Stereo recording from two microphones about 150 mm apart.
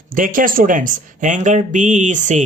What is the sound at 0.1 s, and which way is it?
Speech, 65° right (ahead or behind).